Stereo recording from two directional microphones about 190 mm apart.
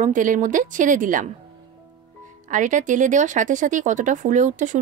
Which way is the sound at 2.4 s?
40° right (ahead or behind).